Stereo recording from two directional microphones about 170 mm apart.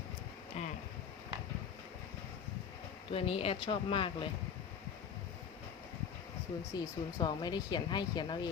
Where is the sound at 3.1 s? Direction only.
35° left (ahead or behind).